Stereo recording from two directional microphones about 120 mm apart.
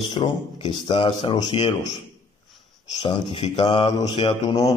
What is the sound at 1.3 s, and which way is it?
Speech, 40° left (ahead or behind).